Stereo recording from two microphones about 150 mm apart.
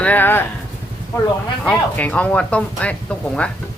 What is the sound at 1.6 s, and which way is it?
Speech, 10° left (ahead or behind).